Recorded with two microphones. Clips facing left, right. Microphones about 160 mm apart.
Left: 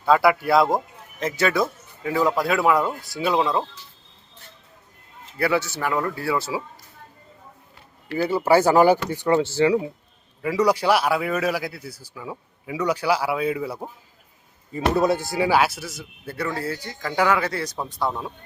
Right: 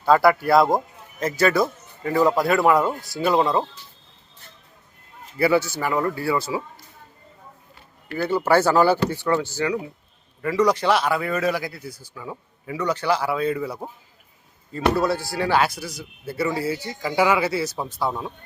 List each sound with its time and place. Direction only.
0.0 s speech: centre (ahead or behind)
5.4 s speech: centre (ahead or behind)
8.2 s speech: 10° left (ahead or behind)
10.4 s speech: 10° left (ahead or behind)
14.9 s speech: 20° left (ahead or behind)
15.4 s speech: 5° left (ahead or behind)